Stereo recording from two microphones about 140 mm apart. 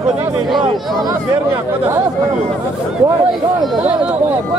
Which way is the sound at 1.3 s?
20° right (ahead or behind).